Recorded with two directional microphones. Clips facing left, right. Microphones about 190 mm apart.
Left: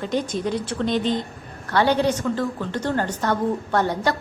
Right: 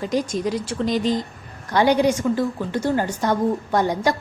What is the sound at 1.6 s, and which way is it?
A woman's voice, 15° right (ahead or behind).